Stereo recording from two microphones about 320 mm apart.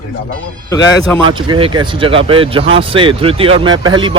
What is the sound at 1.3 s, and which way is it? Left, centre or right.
Speech, centre.